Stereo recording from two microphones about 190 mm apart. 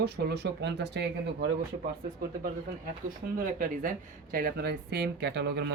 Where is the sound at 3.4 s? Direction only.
45° right (ahead or behind).